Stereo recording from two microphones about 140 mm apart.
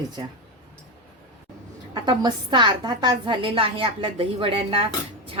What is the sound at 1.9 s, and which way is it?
A woman's voice, 30° right (ahead or behind).